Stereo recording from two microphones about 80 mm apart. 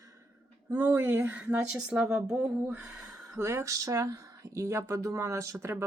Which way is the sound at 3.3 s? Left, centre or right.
Right.